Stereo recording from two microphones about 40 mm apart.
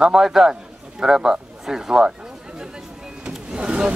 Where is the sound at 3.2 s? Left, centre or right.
Right.